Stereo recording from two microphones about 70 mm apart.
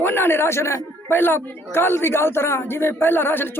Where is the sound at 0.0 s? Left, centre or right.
Left.